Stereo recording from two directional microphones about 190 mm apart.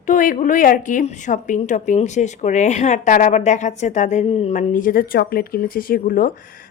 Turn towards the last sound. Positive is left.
turn(degrees=50)  # may be behind; listen again after turning